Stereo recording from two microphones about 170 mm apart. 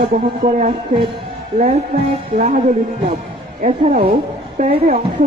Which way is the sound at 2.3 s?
50° right (ahead or behind).